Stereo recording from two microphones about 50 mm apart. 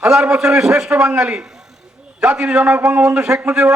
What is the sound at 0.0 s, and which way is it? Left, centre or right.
A man's voice, centre.